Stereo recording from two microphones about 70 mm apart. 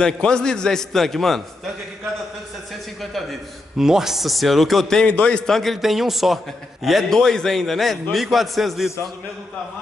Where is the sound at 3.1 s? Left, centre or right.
Centre.